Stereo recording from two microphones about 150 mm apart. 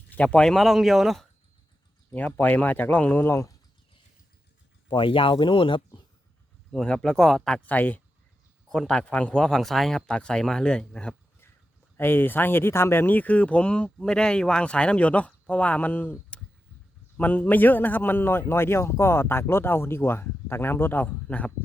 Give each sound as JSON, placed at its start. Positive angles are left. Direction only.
{"t": 0.1, "sound": "speech", "side_deg": 10}
{"t": 2.0, "sound": "a man's voice", "side_deg": 10}
{"t": 4.9, "sound": "speech", "side_deg": 35}
{"t": 6.7, "sound": "a man's voice", "side_deg": 5}
{"t": 17.2, "sound": "a man's voice", "side_deg": 10}